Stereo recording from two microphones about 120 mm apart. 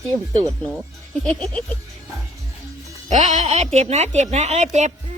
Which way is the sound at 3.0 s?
85° right.